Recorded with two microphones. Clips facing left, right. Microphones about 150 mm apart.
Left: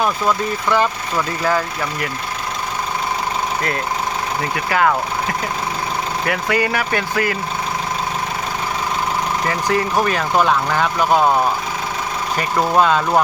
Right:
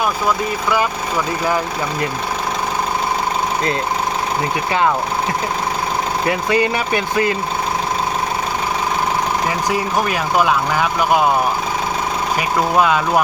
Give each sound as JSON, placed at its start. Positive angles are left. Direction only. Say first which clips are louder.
{"t": 1.5, "sound": "speech", "louder": "even", "side_deg": -15}
{"t": 6.2, "sound": "speech", "louder": "right 2 dB", "side_deg": -25}
{"t": 9.5, "sound": "speech", "louder": "even", "side_deg": -10}
{"t": 12.4, "sound": "speech", "louder": "left 1 dB", "side_deg": -10}